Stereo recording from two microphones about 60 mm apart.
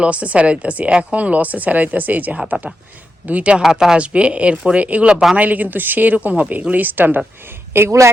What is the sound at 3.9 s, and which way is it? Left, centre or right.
Speech, centre.